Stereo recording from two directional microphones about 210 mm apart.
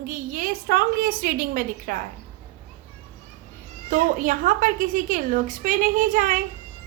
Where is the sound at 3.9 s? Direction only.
40° right (ahead or behind).